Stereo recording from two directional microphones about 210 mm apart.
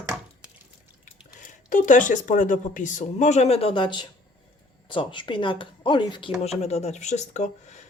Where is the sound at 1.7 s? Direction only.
35° left (ahead or behind).